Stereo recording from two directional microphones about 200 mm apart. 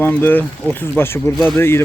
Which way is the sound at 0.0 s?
10° left (ahead or behind).